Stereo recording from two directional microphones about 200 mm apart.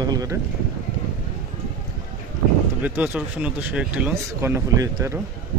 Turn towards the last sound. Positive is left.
turn(degrees=-15)  # may be behind; listen again after turning